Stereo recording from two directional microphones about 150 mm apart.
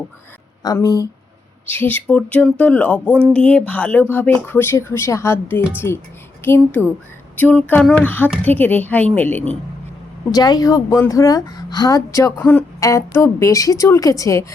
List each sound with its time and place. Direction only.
0.6 s a woman's voice: 25° left (ahead or behind)
1.6 s speech: 15° left (ahead or behind)
10.3 s a woman's voice: 25° left (ahead or behind)
12.4 s speech: 10° left (ahead or behind)
12.8 s a woman's voice: 20° left (ahead or behind)